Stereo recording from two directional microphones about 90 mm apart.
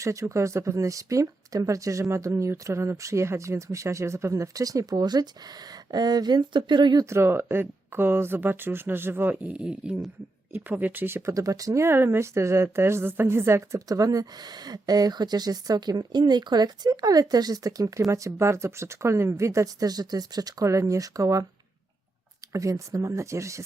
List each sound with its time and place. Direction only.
0.0 s a woman's voice: 35° right (ahead or behind); by 7.0 s 55° right (ahead or behind)
7.0 s speech: 30° right (ahead or behind)
9.3 s speech: 15° right (ahead or behind)
11.3 s a woman's voice: 40° right (ahead or behind)
22.5 s a woman's voice: 35° right (ahead or behind)